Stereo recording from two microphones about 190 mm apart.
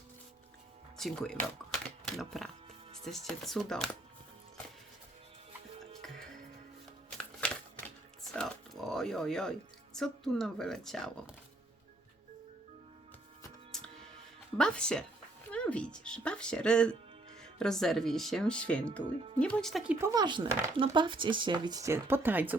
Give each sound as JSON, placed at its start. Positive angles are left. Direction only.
{"t": 0.9, "sound": "speech", "side_deg": 0}
{"t": 5.8, "sound": "music", "side_deg": 0}
{"t": 8.2, "sound": "speech", "side_deg": 0}
{"t": 13.7, "sound": "music", "side_deg": 5}
{"t": 14.6, "sound": "speech", "side_deg": 5}